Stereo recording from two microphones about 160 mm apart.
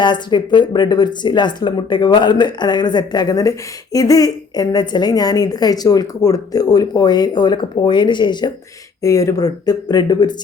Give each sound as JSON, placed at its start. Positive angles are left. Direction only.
{"t": 0.0, "sound": "a woman's voice", "side_deg": 30}